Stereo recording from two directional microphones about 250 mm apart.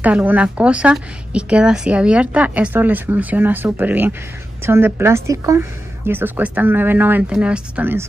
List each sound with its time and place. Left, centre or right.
0.0 s a woman's voice: centre